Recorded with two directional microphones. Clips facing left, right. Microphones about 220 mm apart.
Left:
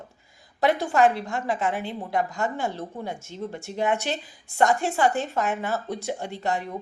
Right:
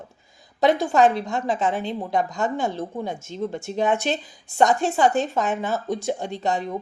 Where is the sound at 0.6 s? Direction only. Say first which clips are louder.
Right 3 dB; 20° right (ahead or behind).